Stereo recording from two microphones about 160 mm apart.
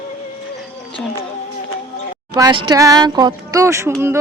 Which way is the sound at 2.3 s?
30° right (ahead or behind).